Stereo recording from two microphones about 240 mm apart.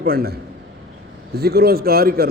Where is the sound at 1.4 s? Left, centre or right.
Right.